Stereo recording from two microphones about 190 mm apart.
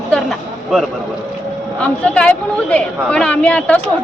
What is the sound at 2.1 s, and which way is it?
A woman's voice, 5° left (ahead or behind).